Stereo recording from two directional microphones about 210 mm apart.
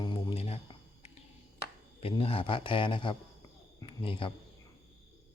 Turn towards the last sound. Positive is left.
turn(degrees=25)  # may be behind; listen again after turning